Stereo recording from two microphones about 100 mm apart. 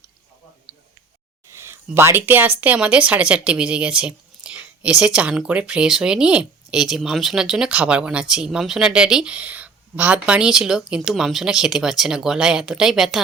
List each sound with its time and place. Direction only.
1.5 s speech: 25° right (ahead or behind); by 13.2 s 5° right (ahead or behind)